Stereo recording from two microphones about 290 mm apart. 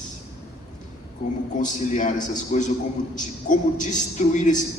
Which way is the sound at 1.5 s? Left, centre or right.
Left.